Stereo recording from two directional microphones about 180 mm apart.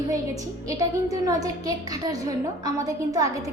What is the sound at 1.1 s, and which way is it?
A woman's voice, 20° right (ahead or behind).